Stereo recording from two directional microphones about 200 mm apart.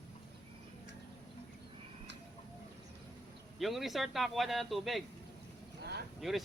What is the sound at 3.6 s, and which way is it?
A man's voice, centre (ahead or behind).